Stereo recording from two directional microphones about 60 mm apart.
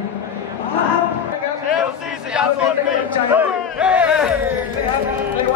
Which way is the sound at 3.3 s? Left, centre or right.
Right.